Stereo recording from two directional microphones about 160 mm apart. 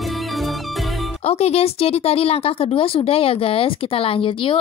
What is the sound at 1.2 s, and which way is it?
Speech, 40° left (ahead or behind).